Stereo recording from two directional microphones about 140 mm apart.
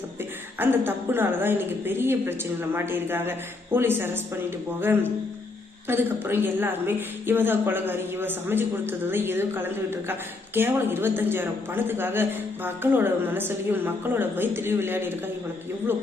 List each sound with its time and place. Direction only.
0.6 s speech: 15° right (ahead or behind)